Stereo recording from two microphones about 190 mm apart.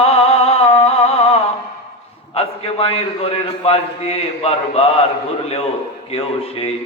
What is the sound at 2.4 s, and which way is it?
A man's voice, 30° left (ahead or behind).